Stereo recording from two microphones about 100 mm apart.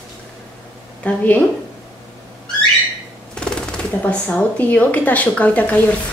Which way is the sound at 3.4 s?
10° left (ahead or behind).